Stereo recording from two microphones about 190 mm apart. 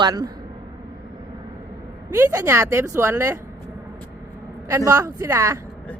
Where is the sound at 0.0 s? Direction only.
20° right (ahead or behind).